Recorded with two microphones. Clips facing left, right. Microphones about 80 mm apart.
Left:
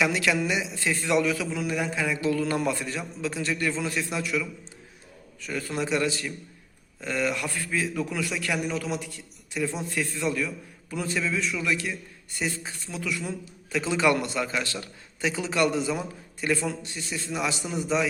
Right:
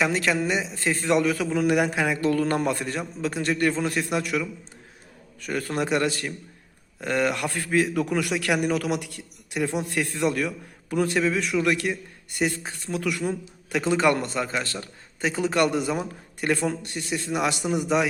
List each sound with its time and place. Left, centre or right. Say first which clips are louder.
0.0 s a man's voice: right 1 dB; right
1.6 s a man's voice: right 7 dB; right